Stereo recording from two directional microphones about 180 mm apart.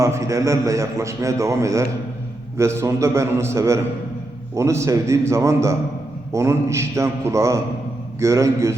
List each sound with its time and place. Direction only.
0.0 s a man's voice: 15° right (ahead or behind)